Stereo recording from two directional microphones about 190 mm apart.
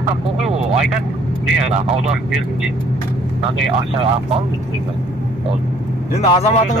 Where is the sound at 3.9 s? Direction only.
30° right (ahead or behind).